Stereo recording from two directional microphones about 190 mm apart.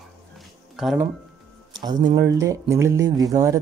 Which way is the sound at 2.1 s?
20° right (ahead or behind).